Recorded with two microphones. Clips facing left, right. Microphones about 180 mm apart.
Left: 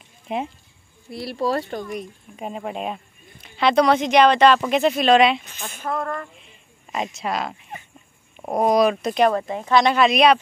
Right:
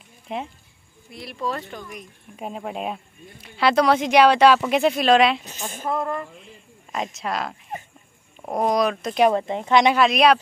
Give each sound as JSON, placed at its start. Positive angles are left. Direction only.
{"t": 0.3, "sound": "speech", "side_deg": 5}
{"t": 1.1, "sound": "speech", "side_deg": 35}
{"t": 2.3, "sound": "speech", "side_deg": 0}
{"t": 9.3, "sound": "speech", "side_deg": -20}
{"t": 9.9, "sound": "speech", "side_deg": 0}